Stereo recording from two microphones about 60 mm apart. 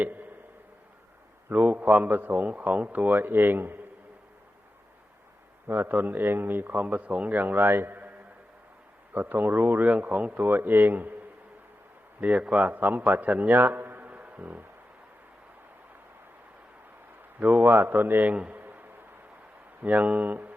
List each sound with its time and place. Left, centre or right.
0.0 s a sound: right
1.5 s a man's voice: right
5.6 s speech: right
9.1 s speech: right
12.2 s a man's voice: right
14.1 s music: right
17.4 s speech: right
18.3 s speech: centre
18.6 s a sound: right
19.8 s a man's voice: right